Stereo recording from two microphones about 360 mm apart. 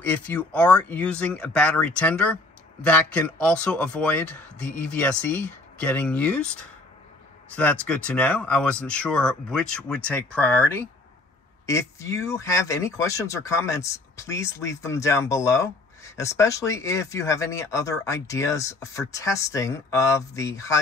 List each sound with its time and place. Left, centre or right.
0.0 s speech: centre
7.5 s speech: centre